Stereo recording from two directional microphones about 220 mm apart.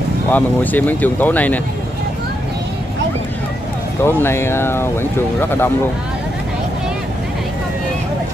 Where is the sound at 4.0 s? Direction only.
10° left (ahead or behind).